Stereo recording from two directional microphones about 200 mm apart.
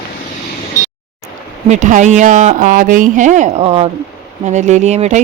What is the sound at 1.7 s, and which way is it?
Speech, 35° right (ahead or behind).